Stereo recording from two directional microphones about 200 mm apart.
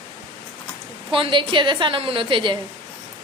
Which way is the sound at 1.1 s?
25° right (ahead or behind).